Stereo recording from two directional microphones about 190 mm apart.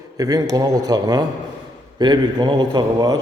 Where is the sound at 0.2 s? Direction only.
20° right (ahead or behind).